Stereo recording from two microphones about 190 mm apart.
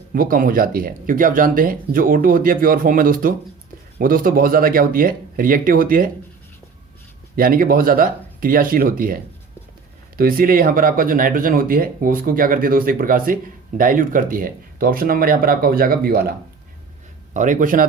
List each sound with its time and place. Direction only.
0.1 s speech: 50° right (ahead or behind)
7.3 s speech: 50° right (ahead or behind)
10.2 s speech: 50° right (ahead or behind)
17.3 s speech: 40° right (ahead or behind)